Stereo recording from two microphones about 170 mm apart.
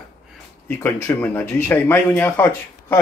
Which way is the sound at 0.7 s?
15° left (ahead or behind).